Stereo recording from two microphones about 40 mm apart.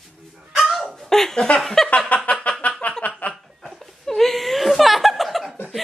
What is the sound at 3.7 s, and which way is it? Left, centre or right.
Laughter, centre.